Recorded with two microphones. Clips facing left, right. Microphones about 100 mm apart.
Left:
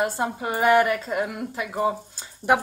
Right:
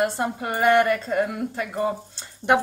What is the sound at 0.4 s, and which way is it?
Speech, 15° left (ahead or behind).